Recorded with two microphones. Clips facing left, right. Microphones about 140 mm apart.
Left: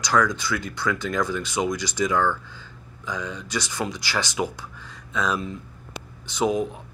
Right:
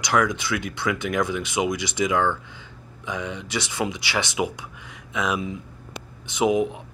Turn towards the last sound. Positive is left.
turn(degrees=-20)  # may be behind; listen again after turning